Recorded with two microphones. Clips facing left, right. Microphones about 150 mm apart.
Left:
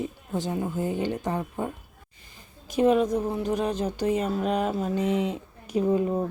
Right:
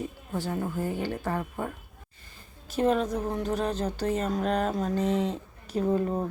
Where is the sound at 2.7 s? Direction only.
10° left (ahead or behind).